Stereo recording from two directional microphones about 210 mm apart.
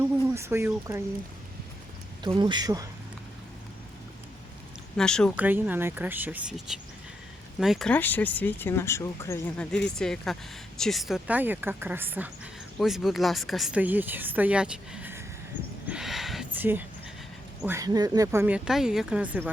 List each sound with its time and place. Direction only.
0.3 s speech: 10° right (ahead or behind)
2.2 s speech: 20° right (ahead or behind)
4.9 s speech: 5° left (ahead or behind)
5.4 s speech: 10° right (ahead or behind)
15.9 s a sound: centre (ahead or behind)
17.6 s speech: 15° right (ahead or behind)